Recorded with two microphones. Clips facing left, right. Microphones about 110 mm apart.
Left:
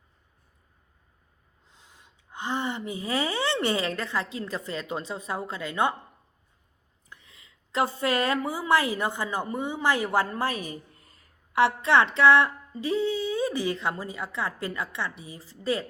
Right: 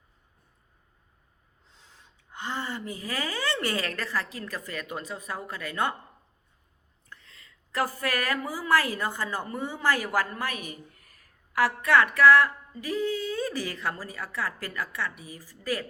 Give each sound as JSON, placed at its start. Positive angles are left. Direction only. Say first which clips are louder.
{"t": 1.7, "sound": "speech", "louder": "left 1 dB", "side_deg": 15}
{"t": 7.1, "sound": "a woman's voice", "louder": "right 1 dB", "side_deg": 15}